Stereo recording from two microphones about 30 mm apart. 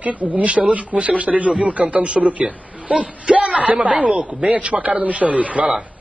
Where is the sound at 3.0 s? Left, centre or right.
Right.